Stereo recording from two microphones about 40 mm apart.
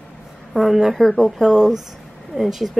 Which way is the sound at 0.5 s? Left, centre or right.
Centre.